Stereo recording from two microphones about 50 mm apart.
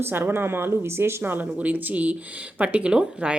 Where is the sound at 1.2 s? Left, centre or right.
Right; by 3.3 s centre.